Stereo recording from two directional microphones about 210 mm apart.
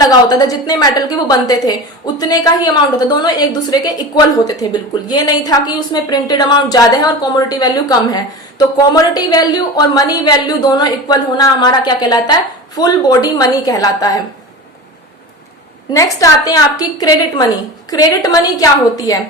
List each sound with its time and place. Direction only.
0.0 s a woman's voice: 20° left (ahead or behind)
15.9 s a woman's voice: 15° left (ahead or behind)